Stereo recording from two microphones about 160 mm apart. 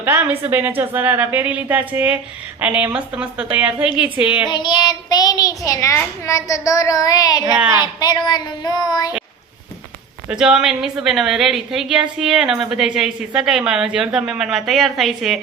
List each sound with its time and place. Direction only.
0.0 s a woman's voice: 15° right (ahead or behind)
4.4 s a child's voice: 30° left (ahead or behind)
10.2 s a woman's voice: 5° right (ahead or behind)